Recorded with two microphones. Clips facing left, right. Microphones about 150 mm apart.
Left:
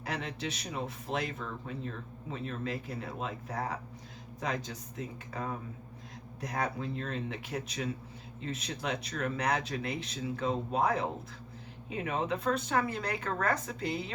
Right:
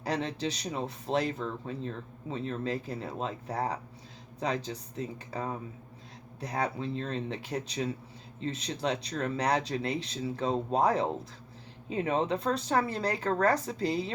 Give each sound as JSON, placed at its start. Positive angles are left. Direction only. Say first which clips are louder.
{"t": 0.0, "sound": "speech", "louder": "right 5 dB", "side_deg": -30}